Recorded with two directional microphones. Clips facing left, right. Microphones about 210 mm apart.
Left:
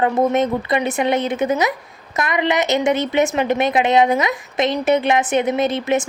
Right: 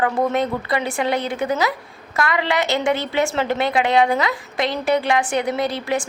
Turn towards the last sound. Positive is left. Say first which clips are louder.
# left 4 dB
turn(degrees=20)  # may be behind; listen again after turning